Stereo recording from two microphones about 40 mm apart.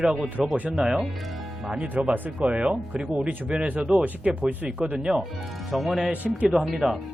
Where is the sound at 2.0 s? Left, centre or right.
Right.